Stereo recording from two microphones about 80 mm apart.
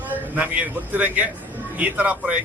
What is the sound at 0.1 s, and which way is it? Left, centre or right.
A man's voice, centre.